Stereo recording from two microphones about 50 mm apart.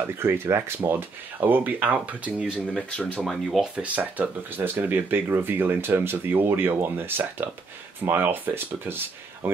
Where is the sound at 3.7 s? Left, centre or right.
Right.